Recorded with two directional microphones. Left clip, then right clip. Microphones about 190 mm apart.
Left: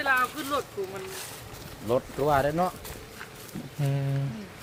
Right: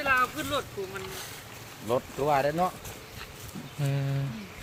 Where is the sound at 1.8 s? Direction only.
40° left (ahead or behind).